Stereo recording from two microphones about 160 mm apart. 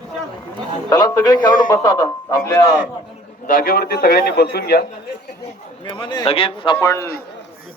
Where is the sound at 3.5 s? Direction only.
65° left (ahead or behind).